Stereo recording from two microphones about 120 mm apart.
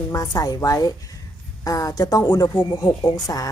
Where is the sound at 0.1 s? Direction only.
30° left (ahead or behind).